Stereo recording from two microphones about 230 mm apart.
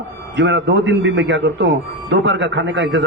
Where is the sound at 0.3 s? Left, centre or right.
Right.